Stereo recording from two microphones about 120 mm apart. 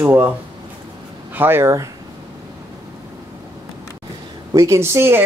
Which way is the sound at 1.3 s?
20° right (ahead or behind).